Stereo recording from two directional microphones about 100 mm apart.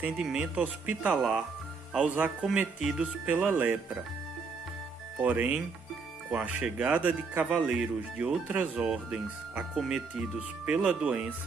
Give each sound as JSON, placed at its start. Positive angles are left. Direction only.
{"t": 0.0, "sound": "speech", "side_deg": -5}
{"t": 3.3, "sound": "speech", "side_deg": -20}
{"t": 5.2, "sound": "speech", "side_deg": -15}